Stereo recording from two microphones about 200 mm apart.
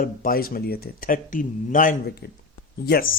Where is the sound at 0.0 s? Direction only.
45° left (ahead or behind).